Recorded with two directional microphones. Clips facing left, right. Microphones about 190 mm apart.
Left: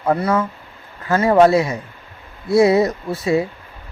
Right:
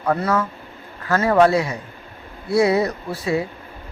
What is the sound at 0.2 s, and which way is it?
Speech, 10° left (ahead or behind).